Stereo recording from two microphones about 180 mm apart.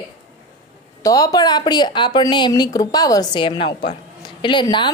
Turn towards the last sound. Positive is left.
turn(degrees=25)  # may be behind; listen again after turning